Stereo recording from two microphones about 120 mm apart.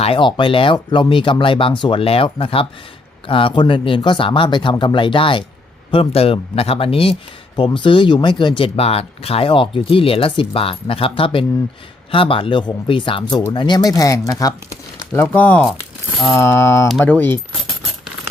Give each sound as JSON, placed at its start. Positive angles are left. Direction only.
{"t": 0.0, "sound": "speech", "side_deg": 45}
{"t": 7.5, "sound": "speech", "side_deg": 40}